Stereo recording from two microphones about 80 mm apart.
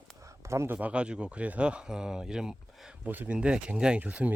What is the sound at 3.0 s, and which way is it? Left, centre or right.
Speech, right.